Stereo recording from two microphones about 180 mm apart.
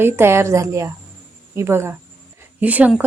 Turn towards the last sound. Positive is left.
turn(degrees=-10)  # may be behind; listen again after turning